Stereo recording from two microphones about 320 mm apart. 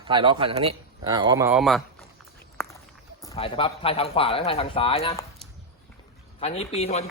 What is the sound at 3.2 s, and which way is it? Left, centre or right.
Speech, centre.